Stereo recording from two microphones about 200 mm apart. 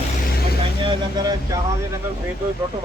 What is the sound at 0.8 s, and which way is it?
Speech, 20° right (ahead or behind).